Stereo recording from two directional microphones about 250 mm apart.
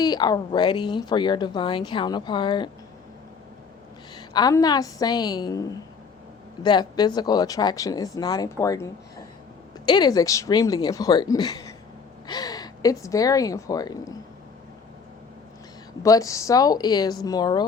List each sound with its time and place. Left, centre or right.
0.0 s speech: centre
4.1 s speech: centre
16.0 s speech: centre